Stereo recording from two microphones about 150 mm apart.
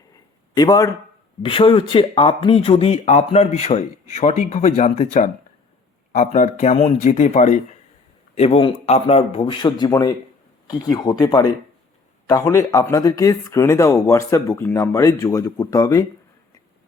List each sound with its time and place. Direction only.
0.5 s speech: 25° left (ahead or behind)
1.4 s speech: 35° left (ahead or behind); by 5.0 s 50° left (ahead or behind)
6.1 s speech: 55° left (ahead or behind)
8.4 s speech: 40° left (ahead or behind); by 16.0 s 25° left (ahead or behind)